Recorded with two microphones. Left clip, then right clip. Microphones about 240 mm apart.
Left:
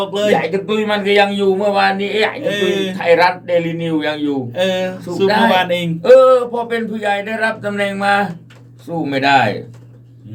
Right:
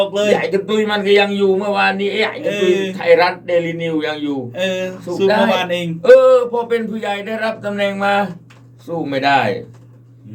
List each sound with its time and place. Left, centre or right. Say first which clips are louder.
0.4 s speech: right 1 dB; centre
2.4 s speech: right 1 dB; left
2.9 s speech: left 2 dB; centre
4.5 s speech: left 3 dB; left
5.3 s speech: left 1 dB; centre
5.5 s speech: left 3 dB; left
6.0 s speech: even; centre